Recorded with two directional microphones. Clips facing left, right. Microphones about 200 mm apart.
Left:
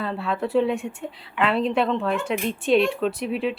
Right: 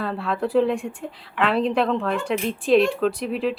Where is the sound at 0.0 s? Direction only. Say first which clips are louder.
Right 1 dB; centre (ahead or behind).